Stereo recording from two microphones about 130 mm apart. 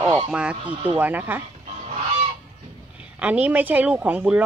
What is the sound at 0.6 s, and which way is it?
Speech, 40° right (ahead or behind).